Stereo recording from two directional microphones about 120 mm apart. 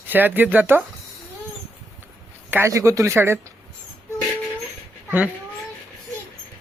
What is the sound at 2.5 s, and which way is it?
Speech, 20° right (ahead or behind).